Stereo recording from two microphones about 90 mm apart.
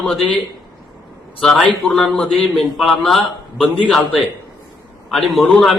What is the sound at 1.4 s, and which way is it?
A man's voice, 5° left (ahead or behind).